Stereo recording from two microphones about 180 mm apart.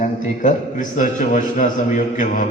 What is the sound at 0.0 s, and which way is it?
A man's voice, 45° left (ahead or behind).